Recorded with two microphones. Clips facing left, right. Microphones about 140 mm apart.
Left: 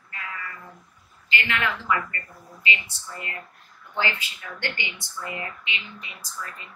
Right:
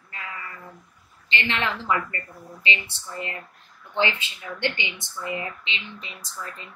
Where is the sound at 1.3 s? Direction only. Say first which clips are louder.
Even; 25° right (ahead or behind).